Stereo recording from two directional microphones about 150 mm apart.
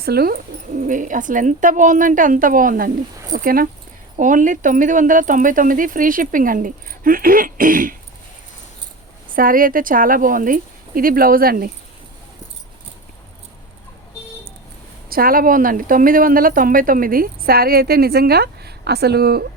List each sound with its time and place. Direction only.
0.0 s speech: 90° right
0.8 s speech: 60° right (ahead or behind)
4.2 s speech: 60° right (ahead or behind)
9.3 s speech: 70° right (ahead or behind)
15.1 s speech: 75° right (ahead or behind); by 19.5 s 90° right